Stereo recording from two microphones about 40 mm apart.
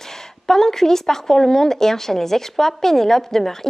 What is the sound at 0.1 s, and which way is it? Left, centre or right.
Speech, centre.